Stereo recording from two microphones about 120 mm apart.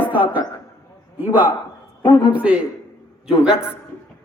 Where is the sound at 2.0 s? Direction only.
40° left (ahead or behind).